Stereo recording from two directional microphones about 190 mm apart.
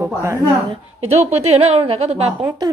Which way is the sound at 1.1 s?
35° right (ahead or behind).